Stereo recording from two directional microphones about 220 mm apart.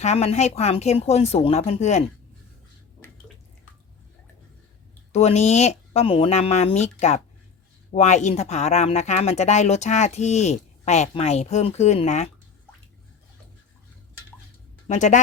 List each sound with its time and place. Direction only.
0.0 s speech: 30° left (ahead or behind)
3.0 s drip: 10° left (ahead or behind)
5.1 s speech: 30° left (ahead or behind)
14.8 s speech: 35° left (ahead or behind)